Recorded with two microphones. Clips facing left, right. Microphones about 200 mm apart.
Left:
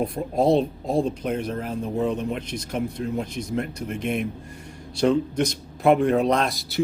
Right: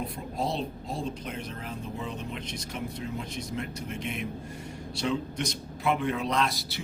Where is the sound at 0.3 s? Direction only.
50° left (ahead or behind).